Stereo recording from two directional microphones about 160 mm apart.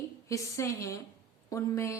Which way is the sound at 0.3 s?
20° left (ahead or behind).